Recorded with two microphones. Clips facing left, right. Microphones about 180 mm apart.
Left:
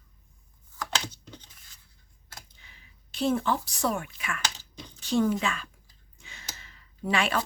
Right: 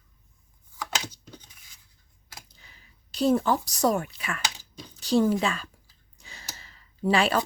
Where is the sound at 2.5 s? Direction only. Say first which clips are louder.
Right 1 dB; 35° right (ahead or behind).